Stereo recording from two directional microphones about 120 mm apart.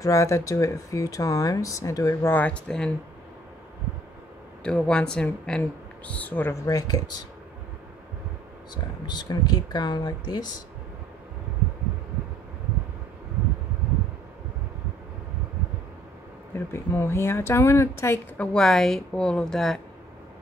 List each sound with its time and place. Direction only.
0.0 s speech: 25° left (ahead or behind); by 2.9 s 5° left (ahead or behind)
4.6 s speech: 5° left (ahead or behind)
6.6 s speech: 30° left (ahead or behind)
9.0 s speech: 35° left (ahead or behind)
16.5 s speech: 20° left (ahead or behind)
18.4 s a woman's voice: 5° left (ahead or behind)